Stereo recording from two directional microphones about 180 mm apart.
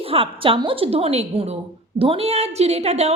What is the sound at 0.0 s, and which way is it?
A woman's voice, 30° right (ahead or behind).